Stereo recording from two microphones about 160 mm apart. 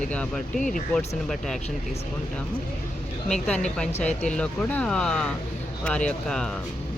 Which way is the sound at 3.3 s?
5° left (ahead or behind).